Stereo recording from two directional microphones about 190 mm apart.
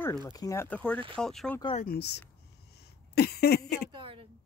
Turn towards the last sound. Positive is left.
turn(degrees=-30)  # may be behind; listen again after turning